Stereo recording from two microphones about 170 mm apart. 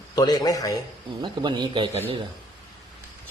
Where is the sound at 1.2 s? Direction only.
25° right (ahead or behind).